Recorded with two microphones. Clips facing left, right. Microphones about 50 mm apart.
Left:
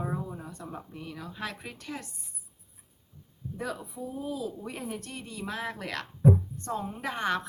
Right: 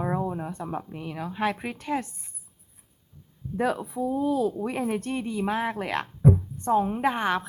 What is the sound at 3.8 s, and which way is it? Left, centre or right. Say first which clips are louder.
Speech: right 10 dB; right.